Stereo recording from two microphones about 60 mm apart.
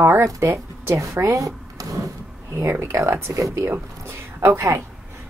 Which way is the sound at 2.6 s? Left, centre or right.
Right.